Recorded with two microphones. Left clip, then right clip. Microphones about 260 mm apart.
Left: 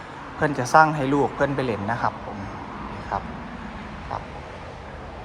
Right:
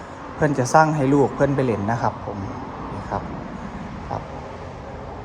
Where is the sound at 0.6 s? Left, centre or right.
Centre.